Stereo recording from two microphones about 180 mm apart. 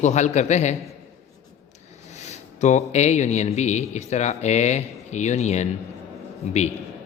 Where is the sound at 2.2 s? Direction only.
40° left (ahead or behind).